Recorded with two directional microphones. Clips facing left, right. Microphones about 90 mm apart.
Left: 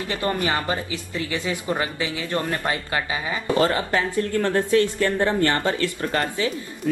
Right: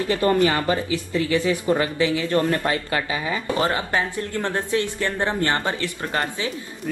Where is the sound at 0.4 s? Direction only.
25° left (ahead or behind).